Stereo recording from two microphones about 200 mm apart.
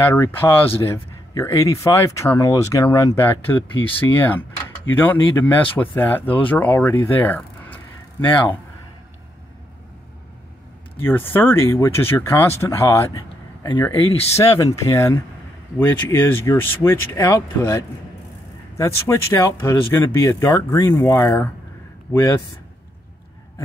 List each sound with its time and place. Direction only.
0.0 s speech: 10° left (ahead or behind)
7.1 s a sound: 10° left (ahead or behind)
11.0 s speech: 10° left (ahead or behind)
18.8 s speech: 10° left (ahead or behind)